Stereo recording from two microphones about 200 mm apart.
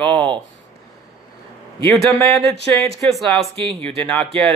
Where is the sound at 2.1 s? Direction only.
15° left (ahead or behind).